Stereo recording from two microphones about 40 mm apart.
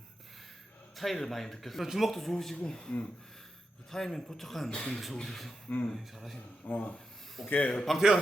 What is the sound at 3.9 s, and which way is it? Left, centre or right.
Speech, centre.